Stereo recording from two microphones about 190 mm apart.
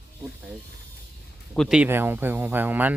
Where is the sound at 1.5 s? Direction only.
Centre (ahead or behind).